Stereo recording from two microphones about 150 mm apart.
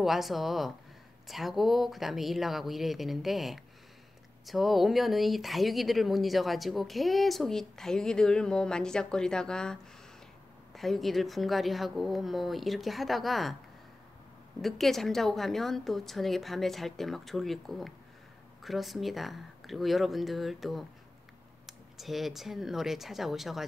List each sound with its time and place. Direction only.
0.0 s speech: centre (ahead or behind)
14.6 s speech: centre (ahead or behind)